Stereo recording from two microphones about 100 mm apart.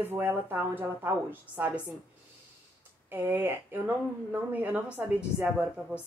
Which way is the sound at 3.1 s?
20° right (ahead or behind).